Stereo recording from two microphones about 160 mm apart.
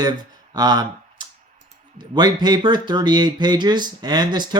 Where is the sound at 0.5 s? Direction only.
25° right (ahead or behind).